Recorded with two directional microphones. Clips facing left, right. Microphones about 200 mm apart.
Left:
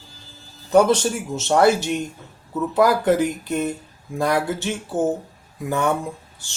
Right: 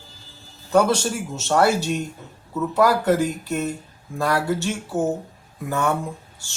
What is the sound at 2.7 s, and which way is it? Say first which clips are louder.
Speech: left 1 dB; 15° left (ahead or behind).